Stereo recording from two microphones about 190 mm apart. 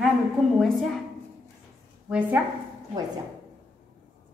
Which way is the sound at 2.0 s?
5° right (ahead or behind).